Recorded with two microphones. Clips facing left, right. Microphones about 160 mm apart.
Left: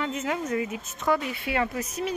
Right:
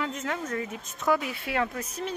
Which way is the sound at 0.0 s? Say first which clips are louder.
Left 3 dB; 10° left (ahead or behind).